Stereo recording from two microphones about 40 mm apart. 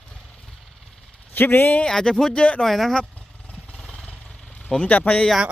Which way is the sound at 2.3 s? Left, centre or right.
Left.